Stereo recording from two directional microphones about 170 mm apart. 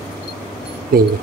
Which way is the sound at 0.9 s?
60° right (ahead or behind).